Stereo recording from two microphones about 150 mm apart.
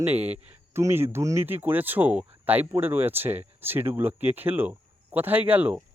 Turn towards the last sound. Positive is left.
turn(degrees=-10)  # may be behind; listen again after turning